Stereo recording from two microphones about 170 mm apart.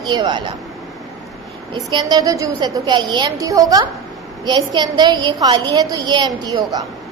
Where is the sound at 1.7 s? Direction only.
25° right (ahead or behind).